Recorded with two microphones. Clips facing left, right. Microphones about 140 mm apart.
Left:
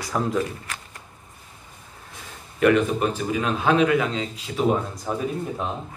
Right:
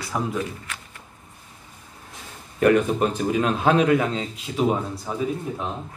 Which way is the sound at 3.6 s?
35° right (ahead or behind).